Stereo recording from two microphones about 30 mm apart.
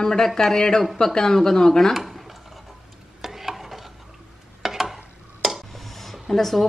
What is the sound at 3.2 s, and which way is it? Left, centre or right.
Stir, centre.